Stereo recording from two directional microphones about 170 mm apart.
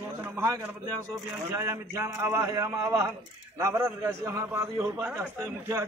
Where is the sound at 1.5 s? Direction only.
15° right (ahead or behind).